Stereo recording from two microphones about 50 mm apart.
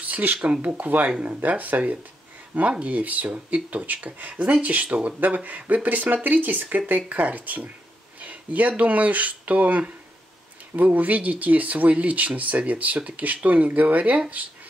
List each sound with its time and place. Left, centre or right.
0.1 s speech: right
0.4 s speech: right